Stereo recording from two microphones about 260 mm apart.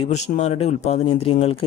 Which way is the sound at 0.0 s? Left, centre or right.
Left.